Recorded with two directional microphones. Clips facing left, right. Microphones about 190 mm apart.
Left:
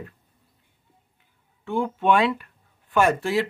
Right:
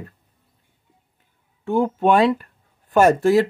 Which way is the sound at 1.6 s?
40° right (ahead or behind).